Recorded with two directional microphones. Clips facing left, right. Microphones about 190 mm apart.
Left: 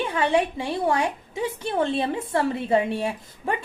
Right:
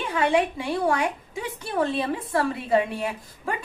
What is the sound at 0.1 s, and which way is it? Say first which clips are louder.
A woman's voice: right 4 dB; 25° left (ahead or behind).